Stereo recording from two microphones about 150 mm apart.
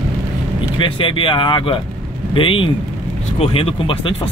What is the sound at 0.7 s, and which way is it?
Speech, 35° left (ahead or behind).